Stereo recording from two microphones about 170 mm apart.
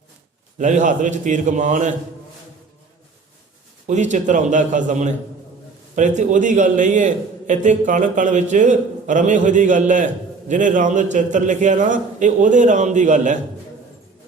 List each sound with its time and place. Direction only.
0.6 s a man's voice: 45° right (ahead or behind)
3.8 s a man's voice: 45° right (ahead or behind)